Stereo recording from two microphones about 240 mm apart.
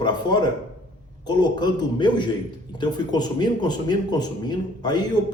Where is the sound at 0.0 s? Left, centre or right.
Centre.